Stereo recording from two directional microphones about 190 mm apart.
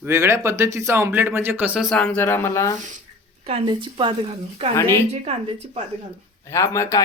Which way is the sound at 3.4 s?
25° right (ahead or behind).